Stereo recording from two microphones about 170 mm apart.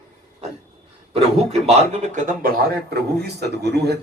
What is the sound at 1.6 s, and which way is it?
Speech, 40° right (ahead or behind).